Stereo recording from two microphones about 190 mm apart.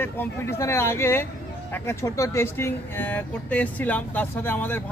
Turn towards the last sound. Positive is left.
turn(degrees=10)  # may be behind; listen again after turning